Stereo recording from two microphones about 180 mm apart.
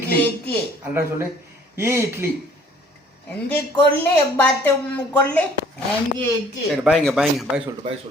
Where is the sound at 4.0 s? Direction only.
10° left (ahead or behind).